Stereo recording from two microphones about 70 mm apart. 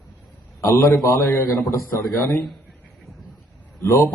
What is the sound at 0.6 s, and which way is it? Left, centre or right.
A man's voice, left.